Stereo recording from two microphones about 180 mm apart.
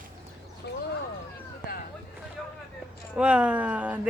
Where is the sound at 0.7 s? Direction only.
65° left (ahead or behind).